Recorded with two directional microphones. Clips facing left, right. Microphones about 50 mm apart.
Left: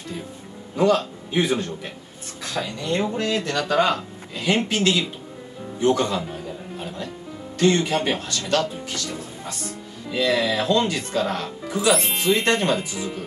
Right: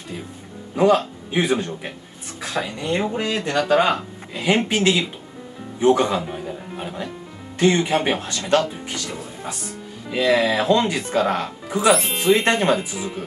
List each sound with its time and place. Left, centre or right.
0.7 s speech: right
5.8 s music: right
7.5 s speech: right
9.0 s music: centre
10.0 s speech: right
11.9 s speech: centre
12.2 s speech: right